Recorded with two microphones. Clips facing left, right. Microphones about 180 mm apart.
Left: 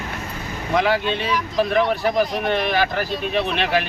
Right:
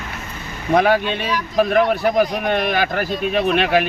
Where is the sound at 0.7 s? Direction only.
50° right (ahead or behind).